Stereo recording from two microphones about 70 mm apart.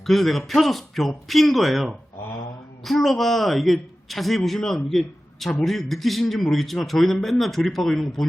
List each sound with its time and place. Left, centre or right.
0.0 s a man's voice: centre